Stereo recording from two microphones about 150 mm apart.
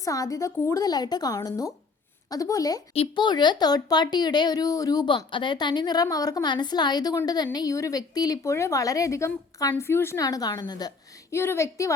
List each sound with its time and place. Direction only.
0.0 s speech: 20° left (ahead or behind)
2.9 s speech: 35° left (ahead or behind); by 11.9 s 20° left (ahead or behind)